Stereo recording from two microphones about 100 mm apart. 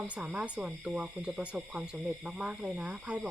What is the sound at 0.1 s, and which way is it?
Speech, 10° right (ahead or behind).